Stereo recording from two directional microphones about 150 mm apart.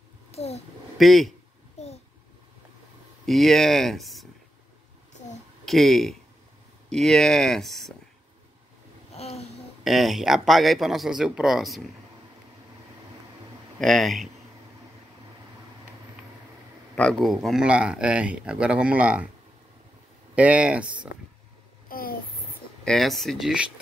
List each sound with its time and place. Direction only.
0.3 s babbling: 45° left (ahead or behind)
0.9 s speech: centre (ahead or behind)
1.8 s a sound: 45° left (ahead or behind)
3.3 s speech: centre (ahead or behind)
5.7 s speech: centre (ahead or behind)
9.8 s speech: centre (ahead or behind)
13.7 s speech: centre (ahead or behind)
16.9 s speech: 5° left (ahead or behind)
20.3 s speech: 10° right (ahead or behind)
21.8 s a sound: 75° left (ahead or behind)
22.8 s speech: centre (ahead or behind)